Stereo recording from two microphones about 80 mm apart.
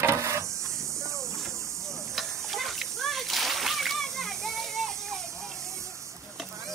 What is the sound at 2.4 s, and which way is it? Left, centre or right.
Splash, centre.